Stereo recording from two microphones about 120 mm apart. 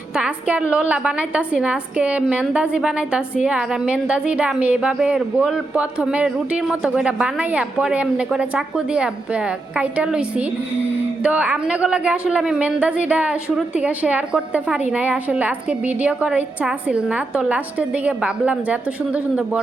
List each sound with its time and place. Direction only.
0.2 s a woman's voice: 10° right (ahead or behind)